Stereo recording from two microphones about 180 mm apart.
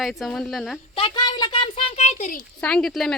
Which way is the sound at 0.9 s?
25° left (ahead or behind).